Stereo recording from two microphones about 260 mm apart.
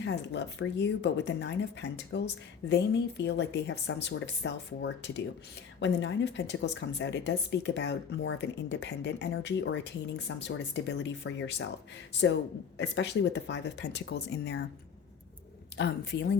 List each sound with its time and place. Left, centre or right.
0.0 s speech: left
12.7 s speech: left
15.8 s speech: left